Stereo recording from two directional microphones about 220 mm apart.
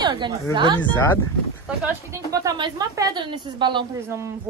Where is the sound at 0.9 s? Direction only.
10° left (ahead or behind).